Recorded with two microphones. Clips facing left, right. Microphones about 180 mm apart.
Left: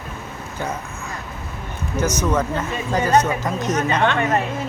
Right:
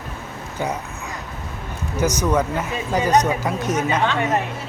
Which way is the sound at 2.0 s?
15° right (ahead or behind).